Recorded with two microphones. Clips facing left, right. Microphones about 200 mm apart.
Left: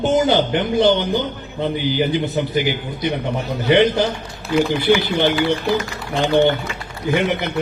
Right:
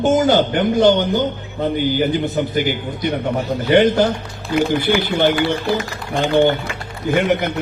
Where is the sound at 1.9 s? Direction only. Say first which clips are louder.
Right 1 dB; 45° right (ahead or behind).